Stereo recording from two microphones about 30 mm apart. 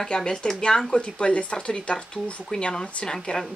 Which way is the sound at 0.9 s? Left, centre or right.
Left.